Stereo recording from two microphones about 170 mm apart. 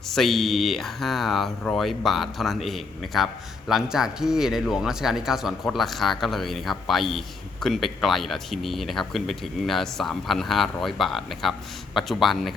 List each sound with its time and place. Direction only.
0.1 s speech: centre (ahead or behind)